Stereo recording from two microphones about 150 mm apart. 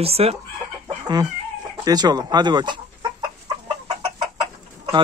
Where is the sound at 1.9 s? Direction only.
25° right (ahead or behind).